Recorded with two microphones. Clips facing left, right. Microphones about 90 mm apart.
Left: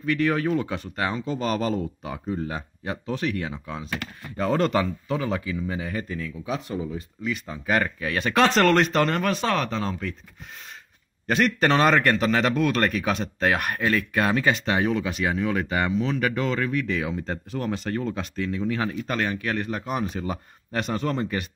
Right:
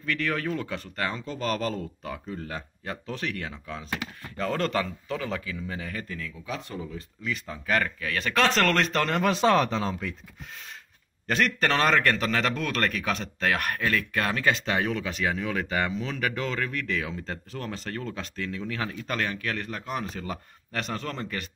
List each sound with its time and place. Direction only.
0.0 s speech: 15° left (ahead or behind)
9.2 s speech: 20° right (ahead or behind)
11.2 s speech: 10° left (ahead or behind)